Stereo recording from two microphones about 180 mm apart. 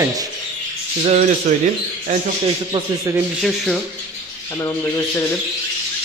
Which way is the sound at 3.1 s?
20° right (ahead or behind).